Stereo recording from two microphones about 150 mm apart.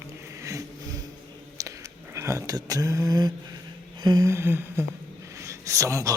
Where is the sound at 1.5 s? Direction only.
20° right (ahead or behind).